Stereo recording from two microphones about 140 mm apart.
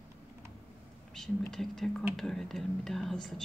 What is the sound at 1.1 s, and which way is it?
Speech, centre (ahead or behind).